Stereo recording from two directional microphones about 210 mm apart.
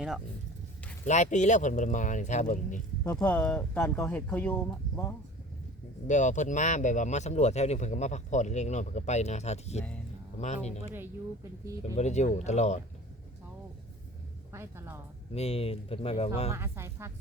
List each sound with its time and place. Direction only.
1.0 s speech: 35° left (ahead or behind)
3.0 s speech: 10° left (ahead or behind)
6.1 s speech: 35° left (ahead or behind)
11.6 s speech: 15° right (ahead or behind)
11.9 s speech: 35° left (ahead or behind)
14.5 s speech: 10° right (ahead or behind)
15.3 s speech: 30° left (ahead or behind)
16.6 s speech: 10° right (ahead or behind)